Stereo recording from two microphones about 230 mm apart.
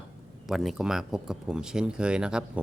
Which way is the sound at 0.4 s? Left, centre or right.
Centre.